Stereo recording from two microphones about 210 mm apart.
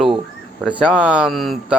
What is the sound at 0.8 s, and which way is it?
Speech, 5° right (ahead or behind).